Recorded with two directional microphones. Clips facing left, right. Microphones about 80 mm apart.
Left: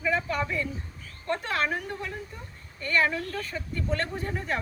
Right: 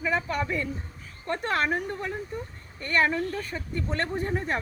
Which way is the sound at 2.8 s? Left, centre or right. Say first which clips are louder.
Right 1 dB; right.